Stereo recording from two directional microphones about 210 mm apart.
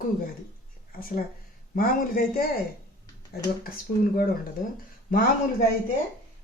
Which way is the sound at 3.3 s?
45° left (ahead or behind).